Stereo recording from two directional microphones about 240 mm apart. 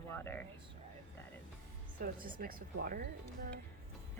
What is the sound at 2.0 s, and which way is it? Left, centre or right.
Speech, right.